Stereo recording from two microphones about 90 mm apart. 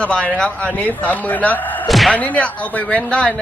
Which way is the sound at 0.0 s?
10° left (ahead or behind).